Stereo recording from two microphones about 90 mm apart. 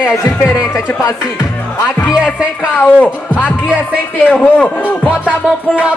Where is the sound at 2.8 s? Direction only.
15° left (ahead or behind).